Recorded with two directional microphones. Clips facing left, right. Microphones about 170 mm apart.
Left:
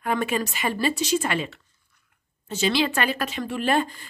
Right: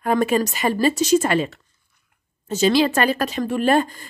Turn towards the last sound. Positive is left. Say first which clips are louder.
# right 5 dB
turn(degrees=-45)  # may be behind; listen again after turning